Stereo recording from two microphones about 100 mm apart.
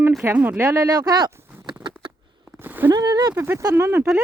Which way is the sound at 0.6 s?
30° right (ahead or behind).